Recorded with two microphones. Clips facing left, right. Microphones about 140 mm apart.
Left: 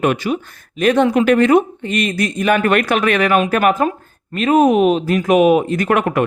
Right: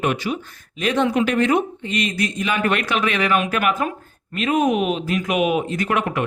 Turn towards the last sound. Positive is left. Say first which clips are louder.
# left 6 dB
turn(degrees=55)  # may be behind; listen again after turning